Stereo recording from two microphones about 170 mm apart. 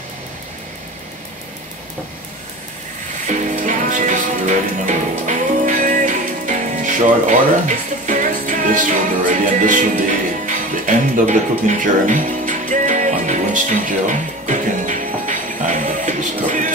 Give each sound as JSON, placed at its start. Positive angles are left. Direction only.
{"t": 3.3, "sound": "music", "side_deg": -50}